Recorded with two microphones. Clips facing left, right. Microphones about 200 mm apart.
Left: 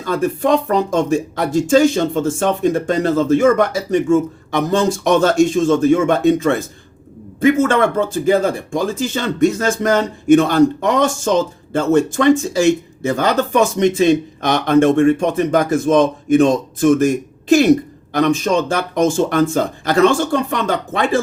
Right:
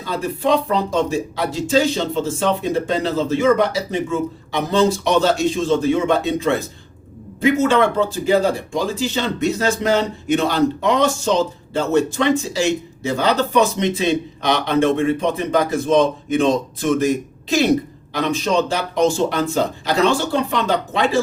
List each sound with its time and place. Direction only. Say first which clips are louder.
0.0 s speech: left 4 dB; 50° left (ahead or behind)
18.1 s speech: left 4 dB; 50° left (ahead or behind)